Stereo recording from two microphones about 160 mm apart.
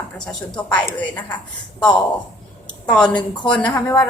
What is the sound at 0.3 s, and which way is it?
Speech, 5° left (ahead or behind).